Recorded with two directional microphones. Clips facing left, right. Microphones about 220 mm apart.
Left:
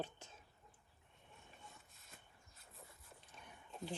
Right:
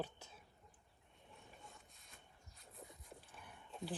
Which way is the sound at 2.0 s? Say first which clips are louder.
Even; centre (ahead or behind).